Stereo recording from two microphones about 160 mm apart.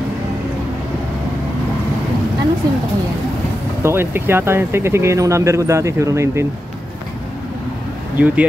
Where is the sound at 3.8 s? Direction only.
15° right (ahead or behind).